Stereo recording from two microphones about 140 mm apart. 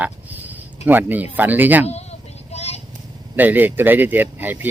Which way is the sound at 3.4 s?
15° right (ahead or behind).